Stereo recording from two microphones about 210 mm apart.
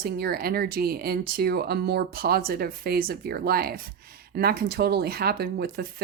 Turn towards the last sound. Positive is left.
turn(degrees=-45)  # may be behind; listen again after turning